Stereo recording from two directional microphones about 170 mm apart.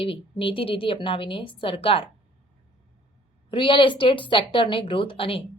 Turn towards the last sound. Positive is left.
turn(degrees=30)  # may be behind; listen again after turning